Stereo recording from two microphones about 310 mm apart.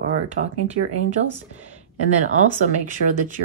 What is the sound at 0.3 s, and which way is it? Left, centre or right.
Speech, right.